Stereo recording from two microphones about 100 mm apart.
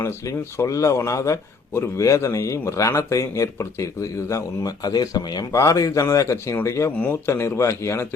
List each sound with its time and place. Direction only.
0.0 s a man's voice: 30° left (ahead or behind)